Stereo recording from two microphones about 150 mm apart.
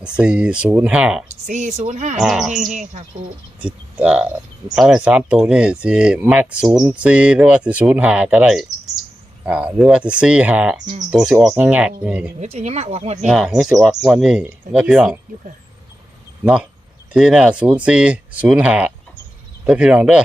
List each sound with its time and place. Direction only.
0.0 s speech: 5° right (ahead or behind)
1.5 s speech: 50° right (ahead or behind)
2.1 s speech: 5° right (ahead or behind)
2.7 s speech: 50° right (ahead or behind)
3.6 s speech: 5° right (ahead or behind)
12.4 s speech: 50° right (ahead or behind)
13.2 s speech: 5° right (ahead or behind)
16.4 s speech: 5° right (ahead or behind)